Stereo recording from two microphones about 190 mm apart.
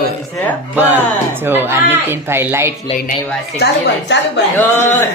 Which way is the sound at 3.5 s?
65° left (ahead or behind).